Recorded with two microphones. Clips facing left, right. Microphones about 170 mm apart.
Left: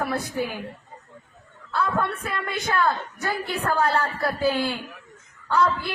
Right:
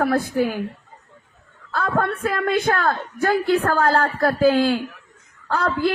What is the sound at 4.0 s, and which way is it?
Speech, 90° right.